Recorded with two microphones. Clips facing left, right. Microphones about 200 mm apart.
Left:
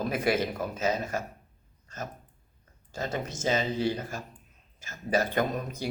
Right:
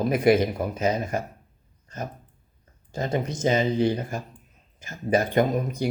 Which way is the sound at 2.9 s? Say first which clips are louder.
Right 6 dB; 15° right (ahead or behind).